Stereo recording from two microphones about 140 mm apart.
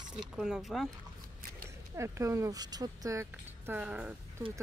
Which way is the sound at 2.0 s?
20° right (ahead or behind).